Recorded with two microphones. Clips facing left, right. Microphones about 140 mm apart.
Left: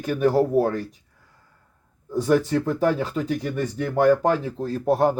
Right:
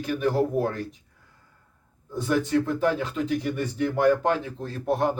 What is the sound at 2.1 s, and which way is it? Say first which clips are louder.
Speech: left 3 dB; 40° left (ahead or behind).